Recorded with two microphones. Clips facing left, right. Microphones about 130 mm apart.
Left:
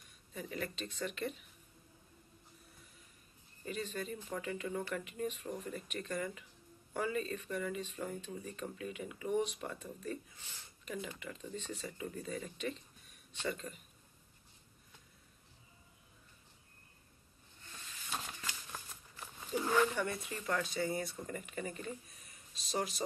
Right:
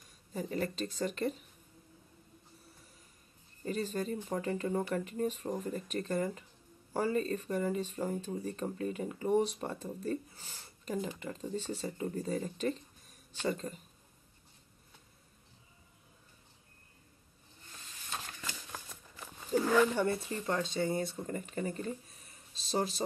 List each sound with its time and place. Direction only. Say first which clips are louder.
0.3 s speech: right 6 dB; 35° right (ahead or behind)
3.6 s speech: right 6 dB; 40° right (ahead or behind)
19.5 s a sound: right 7 dB; 40° right (ahead or behind)
20.0 s speech: right 6 dB; 30° right (ahead or behind)